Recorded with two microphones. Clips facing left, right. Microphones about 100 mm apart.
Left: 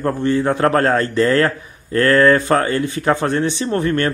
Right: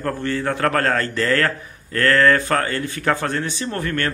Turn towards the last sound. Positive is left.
turn(degrees=25)  # may be behind; listen again after turning